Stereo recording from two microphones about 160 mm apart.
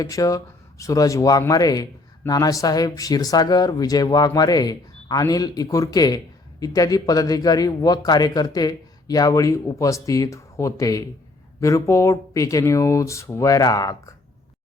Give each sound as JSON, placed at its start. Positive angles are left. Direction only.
{"t": 0.0, "sound": "speech", "side_deg": 20}